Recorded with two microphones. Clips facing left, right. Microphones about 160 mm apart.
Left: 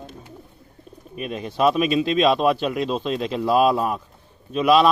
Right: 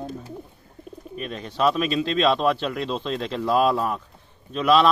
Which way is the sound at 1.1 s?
10° left (ahead or behind).